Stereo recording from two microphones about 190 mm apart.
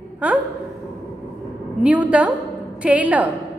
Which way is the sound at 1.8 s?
5° right (ahead or behind).